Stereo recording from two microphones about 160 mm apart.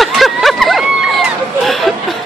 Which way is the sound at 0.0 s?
Centre (ahead or behind).